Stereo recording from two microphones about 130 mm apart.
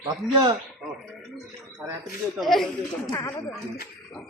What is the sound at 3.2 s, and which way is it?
Speech, 20° left (ahead or behind).